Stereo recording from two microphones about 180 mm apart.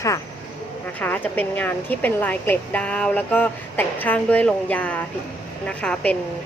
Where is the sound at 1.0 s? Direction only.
10° left (ahead or behind).